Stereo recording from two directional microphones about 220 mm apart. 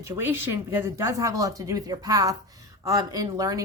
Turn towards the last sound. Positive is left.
turn(degrees=-15)  # may be behind; listen again after turning